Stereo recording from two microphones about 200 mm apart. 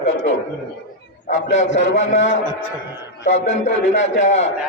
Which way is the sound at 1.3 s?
35° left (ahead or behind).